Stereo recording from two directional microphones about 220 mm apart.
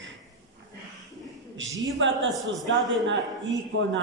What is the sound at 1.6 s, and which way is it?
Speech, 60° right (ahead or behind).